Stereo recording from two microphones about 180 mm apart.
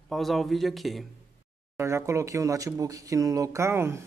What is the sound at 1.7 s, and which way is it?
Speech, 15° right (ahead or behind).